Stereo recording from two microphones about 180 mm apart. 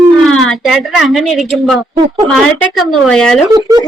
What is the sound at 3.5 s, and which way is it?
Speech, 20° right (ahead or behind).